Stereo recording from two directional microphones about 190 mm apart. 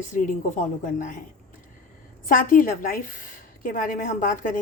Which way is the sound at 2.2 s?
45° left (ahead or behind).